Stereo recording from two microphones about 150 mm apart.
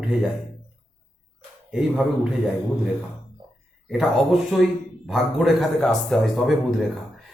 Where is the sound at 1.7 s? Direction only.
5° right (ahead or behind).